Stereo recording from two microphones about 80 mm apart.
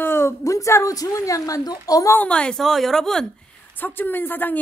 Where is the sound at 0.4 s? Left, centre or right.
Left.